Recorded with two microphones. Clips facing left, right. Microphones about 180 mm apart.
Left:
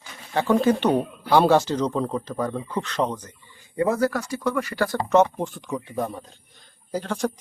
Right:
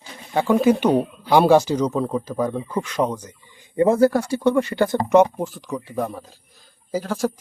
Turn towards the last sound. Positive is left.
turn(degrees=-5)  # may be behind; listen again after turning